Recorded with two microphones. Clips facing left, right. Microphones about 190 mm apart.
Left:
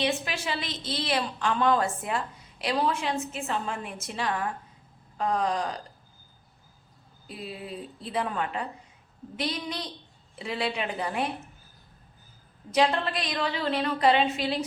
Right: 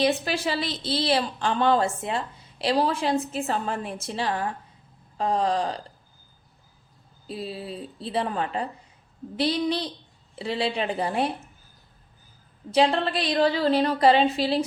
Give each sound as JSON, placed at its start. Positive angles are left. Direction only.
{"t": 0.0, "sound": "a woman's voice", "side_deg": -35}
{"t": 7.3, "sound": "a woman's voice", "side_deg": -30}
{"t": 12.7, "sound": "a woman's voice", "side_deg": -30}